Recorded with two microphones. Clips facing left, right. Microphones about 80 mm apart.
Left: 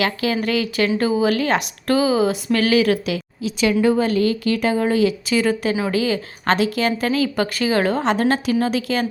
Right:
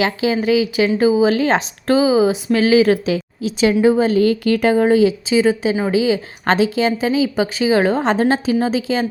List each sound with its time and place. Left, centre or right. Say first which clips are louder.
0.0 s speech: right 3 dB; right
1.3 s speech: right 3 dB; right
6.4 s speech: right 2 dB; right
7.1 s speech: right 3 dB; centre